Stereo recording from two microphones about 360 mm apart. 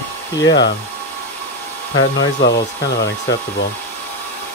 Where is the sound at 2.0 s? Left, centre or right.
Left.